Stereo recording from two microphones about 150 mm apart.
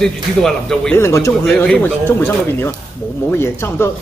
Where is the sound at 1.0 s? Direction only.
20° left (ahead or behind).